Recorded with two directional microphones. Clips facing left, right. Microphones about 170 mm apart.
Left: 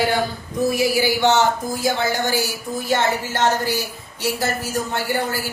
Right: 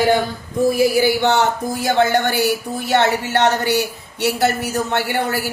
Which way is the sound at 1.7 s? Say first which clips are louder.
Right 5 dB; 65° right (ahead or behind).